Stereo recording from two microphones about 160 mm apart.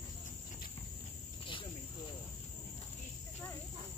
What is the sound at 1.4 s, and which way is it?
Cricket, 30° left (ahead or behind).